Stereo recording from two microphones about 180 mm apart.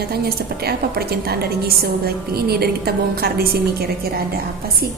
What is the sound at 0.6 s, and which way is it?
A woman's voice, 60° right (ahead or behind).